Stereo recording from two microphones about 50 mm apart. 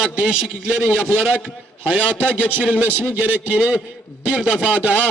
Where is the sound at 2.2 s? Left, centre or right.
Left.